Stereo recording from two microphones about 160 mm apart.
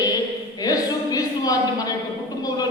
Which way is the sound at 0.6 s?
25° left (ahead or behind).